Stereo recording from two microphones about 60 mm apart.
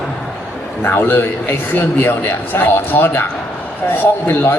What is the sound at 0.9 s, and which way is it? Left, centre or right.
Speech, left.